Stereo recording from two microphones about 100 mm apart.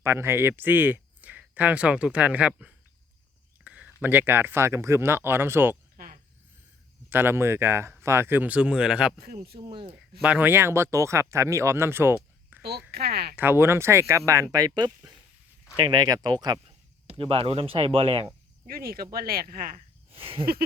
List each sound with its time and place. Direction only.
0.0 s speech: 25° right (ahead or behind)
7.1 s speech: 20° right (ahead or behind)
9.6 s speech: 55° right (ahead or behind)
9.9 s speech: 10° right (ahead or behind); by 16.6 s 40° right (ahead or behind)
17.1 s speech: 70° right (ahead or behind)
20.1 s a sound: 70° right (ahead or behind)